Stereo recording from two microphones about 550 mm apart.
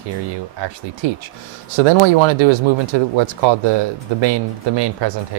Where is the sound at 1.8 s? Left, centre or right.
Right.